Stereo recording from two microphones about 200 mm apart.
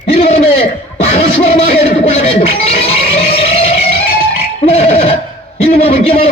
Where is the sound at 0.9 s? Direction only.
35° left (ahead or behind).